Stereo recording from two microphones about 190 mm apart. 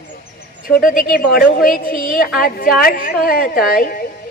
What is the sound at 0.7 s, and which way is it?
A woman's voice, 50° left (ahead or behind).